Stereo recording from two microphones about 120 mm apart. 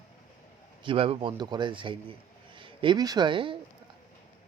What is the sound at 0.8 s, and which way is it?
Speech, 50° right (ahead or behind).